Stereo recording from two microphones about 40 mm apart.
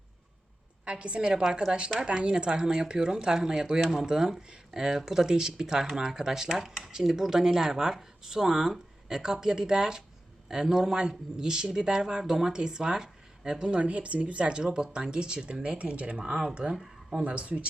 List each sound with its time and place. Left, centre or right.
0.9 s speech: right